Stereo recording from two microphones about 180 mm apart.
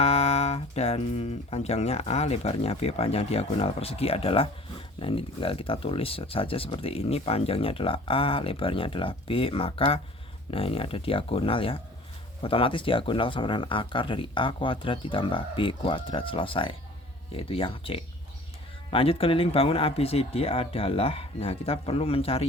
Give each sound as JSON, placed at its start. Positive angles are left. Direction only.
{"t": 0.0, "sound": "speech", "side_deg": 35}